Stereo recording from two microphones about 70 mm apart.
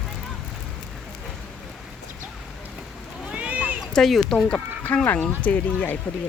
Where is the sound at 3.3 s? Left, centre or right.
Centre.